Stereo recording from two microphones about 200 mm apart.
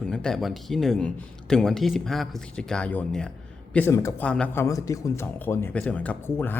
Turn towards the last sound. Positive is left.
turn(degrees=10)  # may be behind; listen again after turning